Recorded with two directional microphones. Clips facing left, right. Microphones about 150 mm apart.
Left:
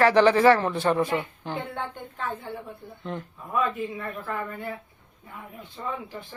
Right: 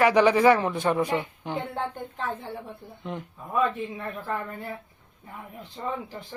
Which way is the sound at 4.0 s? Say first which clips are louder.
Right 1 dB; 30° right (ahead or behind).